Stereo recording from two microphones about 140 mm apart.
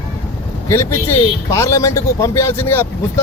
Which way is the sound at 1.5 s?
20° left (ahead or behind).